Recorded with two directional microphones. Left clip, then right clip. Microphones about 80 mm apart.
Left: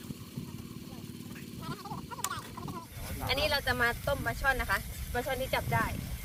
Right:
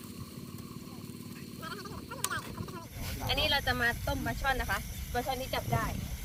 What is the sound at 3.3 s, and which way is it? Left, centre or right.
Speech, left.